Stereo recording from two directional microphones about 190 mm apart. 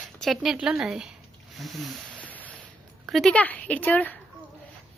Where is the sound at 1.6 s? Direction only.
Centre (ahead or behind).